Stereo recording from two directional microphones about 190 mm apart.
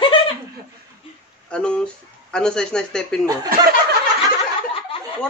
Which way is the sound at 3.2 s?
20° right (ahead or behind).